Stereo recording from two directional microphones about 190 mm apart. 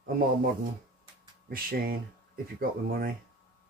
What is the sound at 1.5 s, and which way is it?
Speech, 50° right (ahead or behind).